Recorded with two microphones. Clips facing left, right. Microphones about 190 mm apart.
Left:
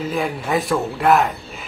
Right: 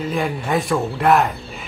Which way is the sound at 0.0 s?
Centre (ahead or behind).